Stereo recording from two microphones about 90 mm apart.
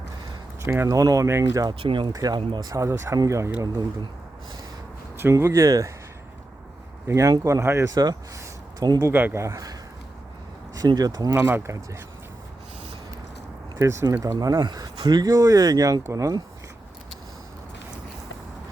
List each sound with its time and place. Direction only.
0.6 s speech: 30° right (ahead or behind)
1.8 s speech: 65° right (ahead or behind)
2.1 s speech: 45° right (ahead or behind)
2.6 s speech: 35° right (ahead or behind)
5.1 s speech: 30° right (ahead or behind)
7.1 s speech: 35° right (ahead or behind)
8.8 s speech: 45° right (ahead or behind)
9.0 s speech: 25° right (ahead or behind)
10.8 s speech: 45° right (ahead or behind)
11.3 s speech: 25° right (ahead or behind)
11.7 s speech: 35° right (ahead or behind)
13.7 s speech: 35° right (ahead or behind)